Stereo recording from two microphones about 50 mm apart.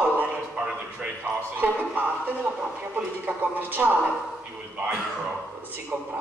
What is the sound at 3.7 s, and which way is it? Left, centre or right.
Speech, right.